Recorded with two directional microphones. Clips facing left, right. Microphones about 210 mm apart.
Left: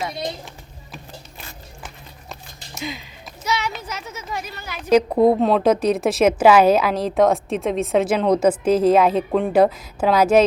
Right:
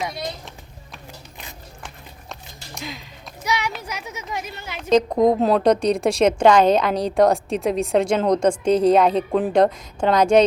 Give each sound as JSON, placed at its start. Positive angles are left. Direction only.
{"t": 2.7, "sound": "speech", "side_deg": 0}
{"t": 3.4, "sound": "a sound", "side_deg": -15}
{"t": 3.7, "sound": "speech", "side_deg": -10}
{"t": 4.8, "sound": "a woman's voice", "side_deg": 5}